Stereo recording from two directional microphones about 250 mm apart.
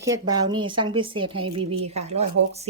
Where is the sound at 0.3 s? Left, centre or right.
Centre.